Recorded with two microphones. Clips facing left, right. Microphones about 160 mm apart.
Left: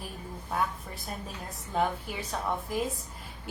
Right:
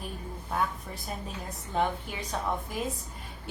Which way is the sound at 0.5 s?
Centre (ahead or behind).